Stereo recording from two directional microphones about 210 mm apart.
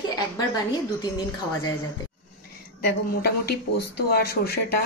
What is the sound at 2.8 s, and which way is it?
Speech, 50° left (ahead or behind).